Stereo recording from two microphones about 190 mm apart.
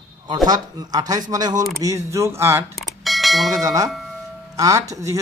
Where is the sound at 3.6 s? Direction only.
20° right (ahead or behind).